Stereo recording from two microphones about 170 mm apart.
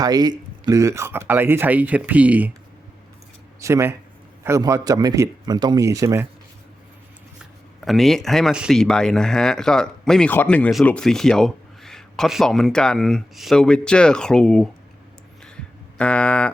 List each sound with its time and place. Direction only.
0.0 s speech: 25° right (ahead or behind)
3.6 s speech: 15° right (ahead or behind)
7.9 s speech: centre (ahead or behind)
15.4 s a sound: 5° left (ahead or behind)